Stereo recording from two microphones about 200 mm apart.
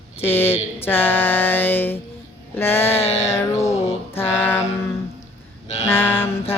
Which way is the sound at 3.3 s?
15° left (ahead or behind).